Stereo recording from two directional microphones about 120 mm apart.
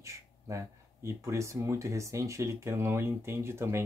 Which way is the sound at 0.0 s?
25° right (ahead or behind).